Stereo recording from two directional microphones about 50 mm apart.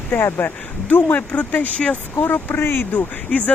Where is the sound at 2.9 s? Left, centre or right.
Left.